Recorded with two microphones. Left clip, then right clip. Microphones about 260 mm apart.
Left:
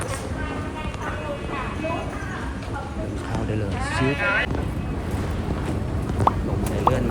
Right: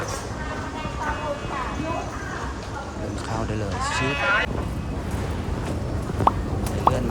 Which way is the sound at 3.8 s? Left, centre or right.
Centre.